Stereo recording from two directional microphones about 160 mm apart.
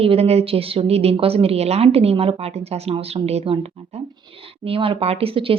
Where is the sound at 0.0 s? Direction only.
40° right (ahead or behind).